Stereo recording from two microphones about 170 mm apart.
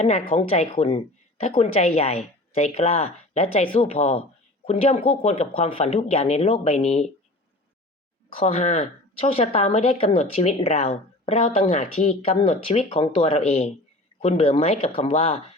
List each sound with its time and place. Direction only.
0.0 s a woman's voice: 40° left (ahead or behind)
8.4 s a woman's voice: 35° left (ahead or behind)